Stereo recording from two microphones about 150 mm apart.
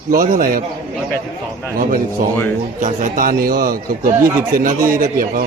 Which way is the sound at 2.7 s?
60° right (ahead or behind).